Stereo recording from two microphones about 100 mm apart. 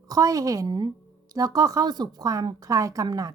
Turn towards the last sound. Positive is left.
turn(degrees=-35)  # may be behind; listen again after turning